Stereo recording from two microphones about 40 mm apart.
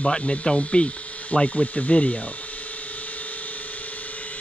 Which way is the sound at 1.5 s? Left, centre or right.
Left.